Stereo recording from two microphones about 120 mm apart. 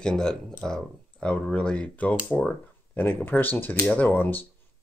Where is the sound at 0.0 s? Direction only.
5° left (ahead or behind).